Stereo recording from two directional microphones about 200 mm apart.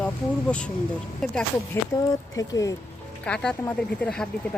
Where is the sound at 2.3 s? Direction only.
15° left (ahead or behind).